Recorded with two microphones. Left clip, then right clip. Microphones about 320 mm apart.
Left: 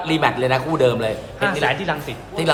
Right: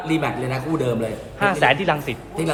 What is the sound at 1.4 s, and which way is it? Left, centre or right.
Speech, centre.